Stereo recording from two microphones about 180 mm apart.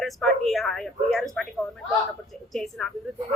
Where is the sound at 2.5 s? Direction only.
Centre (ahead or behind).